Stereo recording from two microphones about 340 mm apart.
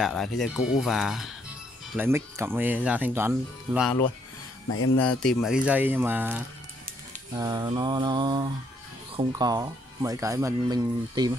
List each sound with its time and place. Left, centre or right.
0.0 s speech: centre
4.6 s speech: left
4.9 s speech: centre